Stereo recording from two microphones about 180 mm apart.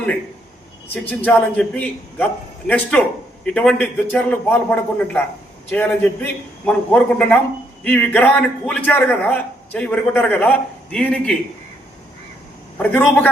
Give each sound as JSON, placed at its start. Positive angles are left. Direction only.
{"t": 1.0, "sound": "a man's voice", "side_deg": 10}
{"t": 12.7, "sound": "a man's voice", "side_deg": 10}